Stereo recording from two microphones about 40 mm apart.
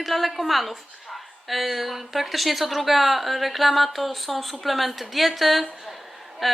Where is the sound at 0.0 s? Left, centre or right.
Centre.